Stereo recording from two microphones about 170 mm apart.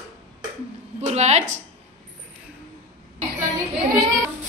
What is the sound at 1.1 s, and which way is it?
Speech, 40° right (ahead or behind).